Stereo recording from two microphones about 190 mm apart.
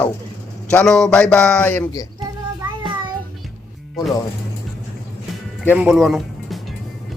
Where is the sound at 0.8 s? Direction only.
Centre (ahead or behind).